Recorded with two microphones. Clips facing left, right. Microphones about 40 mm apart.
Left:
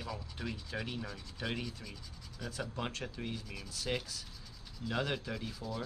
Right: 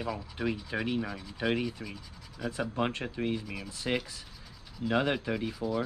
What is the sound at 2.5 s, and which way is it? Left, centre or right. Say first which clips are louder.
Speech: right 8 dB; right.